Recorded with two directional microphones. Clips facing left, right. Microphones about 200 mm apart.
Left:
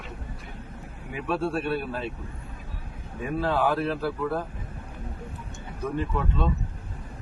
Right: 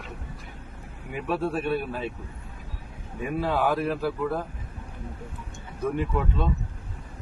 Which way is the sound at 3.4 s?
10° right (ahead or behind).